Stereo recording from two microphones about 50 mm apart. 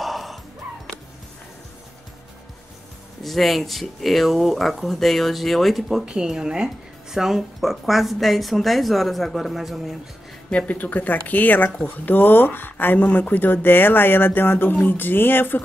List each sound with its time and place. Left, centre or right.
0.0 s dog: centre
3.2 s speech: centre
6.0 s speech: centre
10.5 s speech: left